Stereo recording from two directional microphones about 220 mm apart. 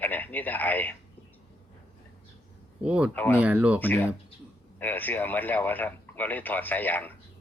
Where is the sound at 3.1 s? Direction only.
10° left (ahead or behind).